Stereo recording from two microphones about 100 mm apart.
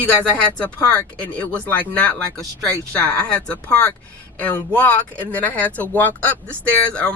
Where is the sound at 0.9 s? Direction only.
10° left (ahead or behind).